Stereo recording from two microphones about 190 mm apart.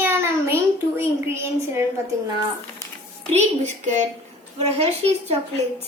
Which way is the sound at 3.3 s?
40° right (ahead or behind).